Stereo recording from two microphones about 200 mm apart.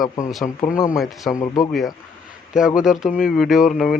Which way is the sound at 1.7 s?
Centre (ahead or behind).